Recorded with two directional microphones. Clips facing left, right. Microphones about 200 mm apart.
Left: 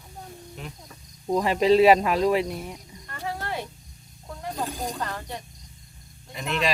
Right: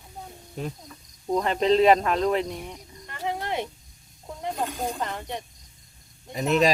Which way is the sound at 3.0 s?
20° right (ahead or behind).